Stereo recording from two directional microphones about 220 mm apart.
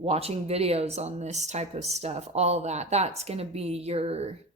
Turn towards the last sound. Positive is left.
turn(degrees=-30)  # may be behind; listen again after turning